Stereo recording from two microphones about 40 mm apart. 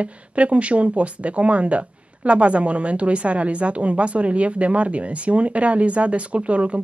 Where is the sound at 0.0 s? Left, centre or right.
Right.